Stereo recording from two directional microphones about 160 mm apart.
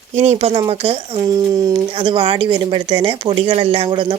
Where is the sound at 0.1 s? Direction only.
45° right (ahead or behind).